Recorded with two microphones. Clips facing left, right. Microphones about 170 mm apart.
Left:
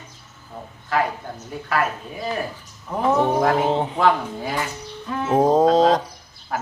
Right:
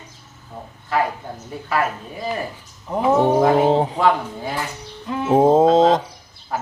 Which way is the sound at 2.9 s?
20° right (ahead or behind).